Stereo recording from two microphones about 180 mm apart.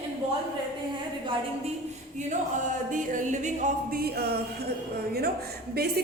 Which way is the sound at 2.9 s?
45° right (ahead or behind).